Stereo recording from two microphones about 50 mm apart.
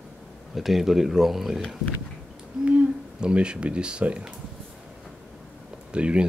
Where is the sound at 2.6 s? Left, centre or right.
Right.